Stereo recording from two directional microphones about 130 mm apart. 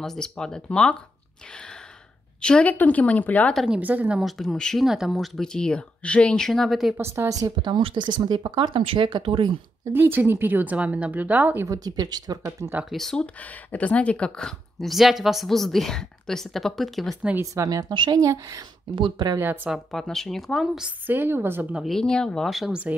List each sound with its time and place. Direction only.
0.0 s speech: 5° left (ahead or behind)
1.5 s gasp: 5° left (ahead or behind)
2.4 s a woman's voice: 10° left (ahead or behind)
3.5 s a woman's voice: 5° right (ahead or behind)
4.2 s speech: centre (ahead or behind)
7.0 s speech: 20° right (ahead or behind); by 9.6 s 40° right (ahead or behind)
9.9 s a woman's voice: 15° right (ahead or behind)
11.6 s a woman's voice: 25° right (ahead or behind)
12.9 s speech: 5° left (ahead or behind)
17.4 s a woman's voice: 25° right (ahead or behind)
19.4 s a woman's voice: 15° right (ahead or behind)
19.7 s speech: centre (ahead or behind)
21.1 s a woman's voice: 15° right (ahead or behind)
21.8 s speech: 5° left (ahead or behind)